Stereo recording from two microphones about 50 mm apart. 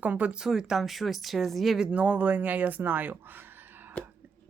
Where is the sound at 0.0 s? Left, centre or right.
Right.